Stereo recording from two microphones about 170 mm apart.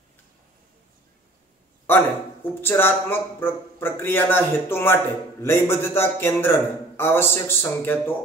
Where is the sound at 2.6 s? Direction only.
15° left (ahead or behind).